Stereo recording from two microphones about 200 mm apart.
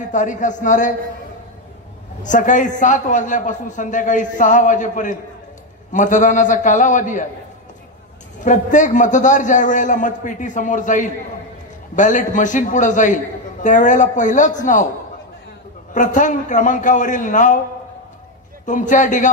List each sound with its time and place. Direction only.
0.1 s a man's voice: 40° left (ahead or behind)
2.2 s a man's voice: 40° left (ahead or behind)
8.5 s a man's voice: 40° left (ahead or behind)
15.9 s a man's voice: 40° left (ahead or behind)
18.7 s a man's voice: 40° left (ahead or behind)